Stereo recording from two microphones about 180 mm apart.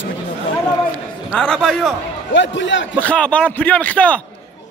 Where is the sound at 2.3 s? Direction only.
90° left.